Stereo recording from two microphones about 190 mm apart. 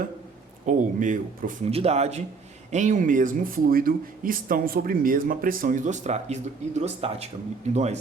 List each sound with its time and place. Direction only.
0.6 s speech: 45° right (ahead or behind)
1.7 s speech: 35° right (ahead or behind)